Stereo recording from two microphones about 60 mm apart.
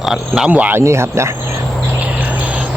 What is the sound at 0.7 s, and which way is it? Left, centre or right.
Speech, right.